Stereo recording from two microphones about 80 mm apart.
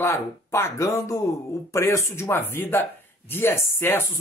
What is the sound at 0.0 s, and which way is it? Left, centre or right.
Speech, left.